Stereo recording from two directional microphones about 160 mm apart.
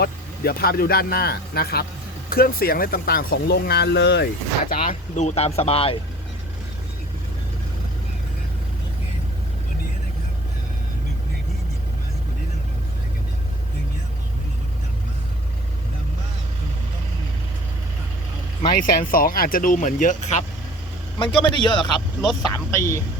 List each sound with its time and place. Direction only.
0.0 s speech: 70° left (ahead or behind); by 4.3 s 90° left
4.7 s speech: 55° left (ahead or behind); by 6.0 s 35° left (ahead or behind)
18.8 s speech: 60° left (ahead or behind)
21.2 s a man's voice: 30° left (ahead or behind)
21.8 s speech: centre (ahead or behind)
22.5 s speech: 20° left (ahead or behind)